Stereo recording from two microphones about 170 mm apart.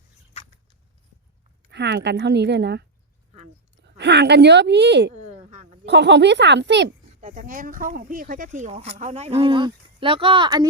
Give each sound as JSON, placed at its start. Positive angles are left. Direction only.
{"t": 1.7, "sound": "speech", "side_deg": -85}
{"t": 3.8, "sound": "speech", "side_deg": -85}
{"t": 5.1, "sound": "a sound", "side_deg": -45}
{"t": 5.8, "sound": "speech", "side_deg": -90}
{"t": 7.2, "sound": "speech", "side_deg": -50}